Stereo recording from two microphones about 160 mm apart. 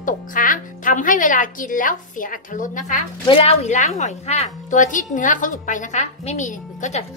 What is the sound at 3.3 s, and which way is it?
A woman's voice, 40° left (ahead or behind).